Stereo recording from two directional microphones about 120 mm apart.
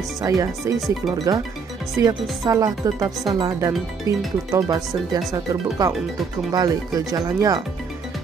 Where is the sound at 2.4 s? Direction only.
30° right (ahead or behind).